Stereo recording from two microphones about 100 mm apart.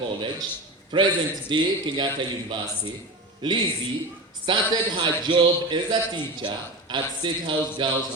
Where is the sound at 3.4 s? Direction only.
45° right (ahead or behind).